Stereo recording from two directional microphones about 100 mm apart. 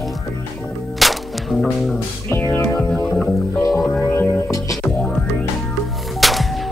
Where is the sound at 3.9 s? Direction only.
25° left (ahead or behind).